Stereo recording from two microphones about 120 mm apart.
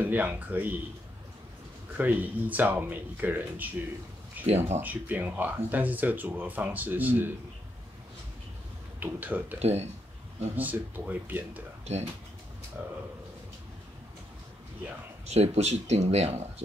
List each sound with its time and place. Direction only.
0.0 s speech: 15° right (ahead or behind)
2.0 s speech: 15° right (ahead or behind)
4.5 s speech: 65° right (ahead or behind)
4.7 s speech: 15° right (ahead or behind)
9.0 s speech: 15° right (ahead or behind)
9.6 s speech: 65° right (ahead or behind)
10.5 s speech: 15° right (ahead or behind)
11.8 s speech: 65° right (ahead or behind)
12.8 s speech: 15° right (ahead or behind)
15.2 s speech: 60° right (ahead or behind)